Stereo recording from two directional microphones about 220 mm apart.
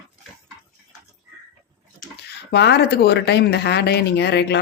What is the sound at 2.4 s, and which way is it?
Speech, 50° left (ahead or behind).